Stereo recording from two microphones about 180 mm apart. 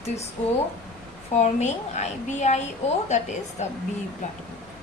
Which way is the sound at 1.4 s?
40° left (ahead or behind).